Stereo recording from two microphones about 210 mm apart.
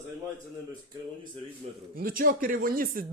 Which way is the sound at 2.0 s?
40° right (ahead or behind).